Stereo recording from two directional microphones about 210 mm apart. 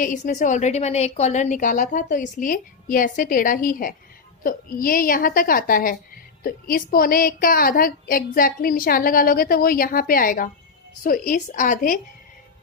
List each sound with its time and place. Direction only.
0.0 s a woman's voice: 35° left (ahead or behind)